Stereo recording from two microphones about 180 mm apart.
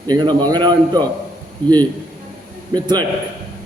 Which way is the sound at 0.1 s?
25° right (ahead or behind).